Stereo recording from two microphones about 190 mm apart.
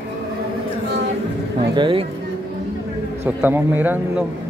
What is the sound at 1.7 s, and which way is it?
Speech, 25° right (ahead or behind).